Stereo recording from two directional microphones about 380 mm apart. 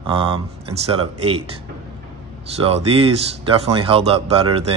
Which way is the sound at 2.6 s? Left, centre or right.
Centre.